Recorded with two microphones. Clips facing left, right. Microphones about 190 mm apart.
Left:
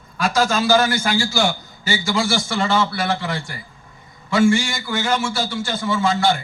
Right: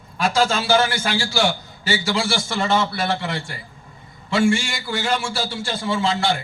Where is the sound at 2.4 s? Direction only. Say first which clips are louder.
Left 1 dB; 25° right (ahead or behind).